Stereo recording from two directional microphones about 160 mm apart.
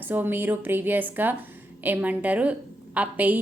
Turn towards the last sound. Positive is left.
turn(degrees=-10)  # may be behind; listen again after turning